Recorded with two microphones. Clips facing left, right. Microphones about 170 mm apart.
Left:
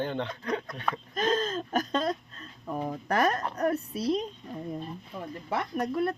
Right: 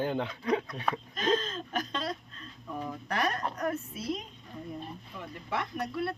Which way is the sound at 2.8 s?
45° left (ahead or behind).